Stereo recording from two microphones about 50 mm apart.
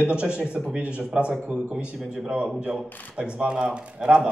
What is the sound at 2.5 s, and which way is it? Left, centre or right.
Speech, centre.